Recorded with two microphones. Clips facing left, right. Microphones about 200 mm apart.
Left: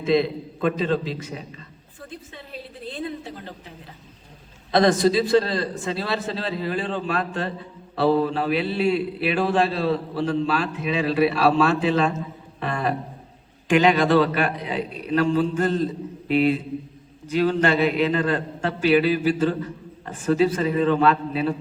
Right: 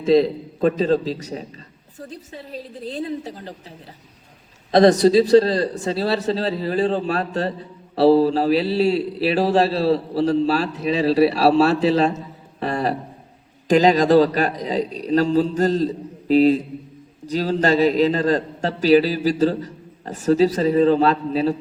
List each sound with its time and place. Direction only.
0.0 s a man's voice: 35° right (ahead or behind)
12.5 s a sound: 35° right (ahead or behind)
13.7 s a man's voice: 35° right (ahead or behind)